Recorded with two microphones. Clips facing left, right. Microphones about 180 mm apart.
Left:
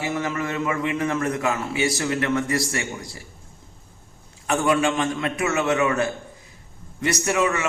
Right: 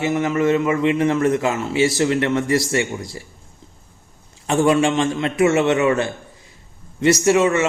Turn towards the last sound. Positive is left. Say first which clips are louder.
# right 7 dB
turn(degrees=-25)  # may be behind; listen again after turning